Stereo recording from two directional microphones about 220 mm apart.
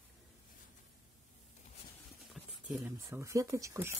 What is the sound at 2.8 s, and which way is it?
Speech, 10° right (ahead or behind).